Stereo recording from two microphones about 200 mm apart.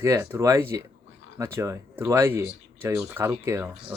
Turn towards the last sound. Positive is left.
turn(degrees=-15)  # may be behind; listen again after turning